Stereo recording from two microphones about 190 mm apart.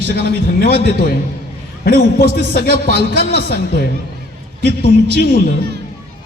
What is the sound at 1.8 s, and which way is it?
A man's voice, 55° left (ahead or behind).